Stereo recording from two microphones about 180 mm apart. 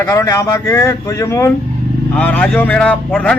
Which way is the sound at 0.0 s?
15° left (ahead or behind).